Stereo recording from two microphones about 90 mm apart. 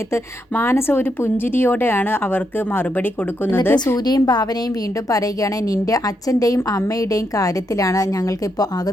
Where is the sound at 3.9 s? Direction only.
50° left (ahead or behind).